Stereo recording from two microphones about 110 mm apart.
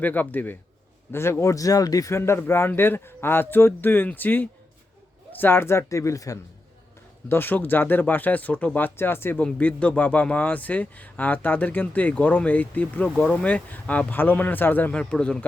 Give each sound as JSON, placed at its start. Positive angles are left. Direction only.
{"t": 0.0, "sound": "a man's voice", "side_deg": 15}
{"t": 7.3, "sound": "a man's voice", "side_deg": 20}